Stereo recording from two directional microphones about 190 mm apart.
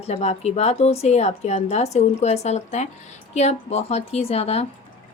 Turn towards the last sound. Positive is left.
turn(degrees=30)  # may be behind; listen again after turning